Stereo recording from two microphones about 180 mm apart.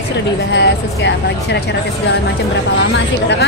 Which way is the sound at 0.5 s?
75° left (ahead or behind).